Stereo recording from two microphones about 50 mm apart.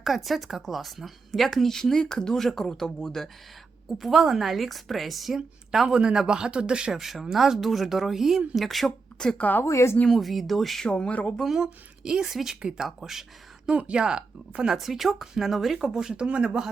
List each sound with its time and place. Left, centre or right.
0.0 s speech: centre
6.0 s speech: centre
7.0 s speech: centre
9.4 s speech: left
9.6 s speech: left
10.1 s speech: centre
10.8 s speech: left
11.4 s speech: centre
13.7 s speech: right
14.8 s speech: centre; by 16.6 s right